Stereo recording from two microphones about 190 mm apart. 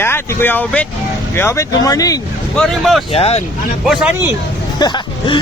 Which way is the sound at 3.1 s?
30° left (ahead or behind).